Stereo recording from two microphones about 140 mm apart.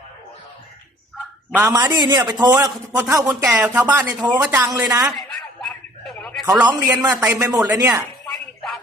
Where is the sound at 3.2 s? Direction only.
10° right (ahead or behind).